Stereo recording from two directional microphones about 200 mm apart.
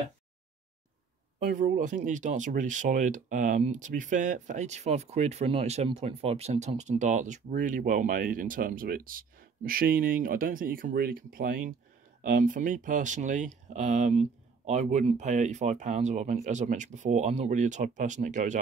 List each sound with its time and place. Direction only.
1.4 s speech: 40° right (ahead or behind)